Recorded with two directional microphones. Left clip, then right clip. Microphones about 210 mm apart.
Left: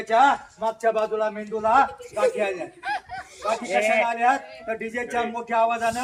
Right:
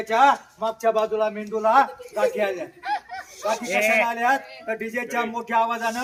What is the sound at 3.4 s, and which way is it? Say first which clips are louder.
Speech: right 1 dB; 45° right (ahead or behind).